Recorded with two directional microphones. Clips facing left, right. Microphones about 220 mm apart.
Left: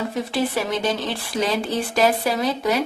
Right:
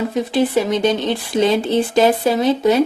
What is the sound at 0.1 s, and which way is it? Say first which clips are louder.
Speech: right 6 dB; 20° right (ahead or behind).